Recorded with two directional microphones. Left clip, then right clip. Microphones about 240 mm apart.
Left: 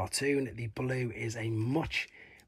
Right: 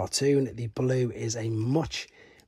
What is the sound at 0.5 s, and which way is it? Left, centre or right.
Speech, right.